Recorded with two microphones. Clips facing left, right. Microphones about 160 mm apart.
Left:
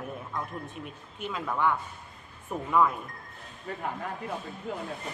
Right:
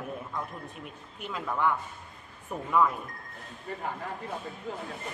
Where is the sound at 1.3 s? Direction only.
5° right (ahead or behind).